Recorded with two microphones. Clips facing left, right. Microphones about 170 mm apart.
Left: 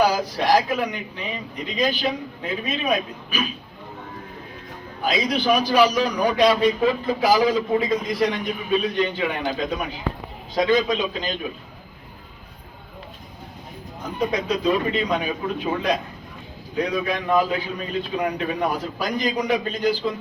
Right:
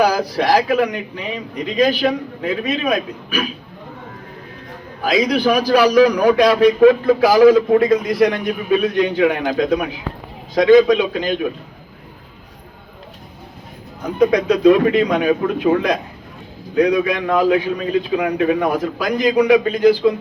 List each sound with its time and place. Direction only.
0.0 s a man's voice: 75° right (ahead or behind)
5.0 s a man's voice: 70° right (ahead or behind)
14.0 s a man's voice: 70° right (ahead or behind)